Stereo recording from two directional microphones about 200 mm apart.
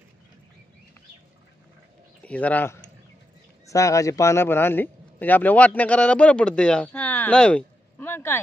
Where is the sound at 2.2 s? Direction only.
5° left (ahead or behind).